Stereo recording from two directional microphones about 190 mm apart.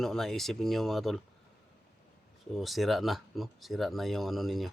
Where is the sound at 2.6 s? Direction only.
Centre (ahead or behind).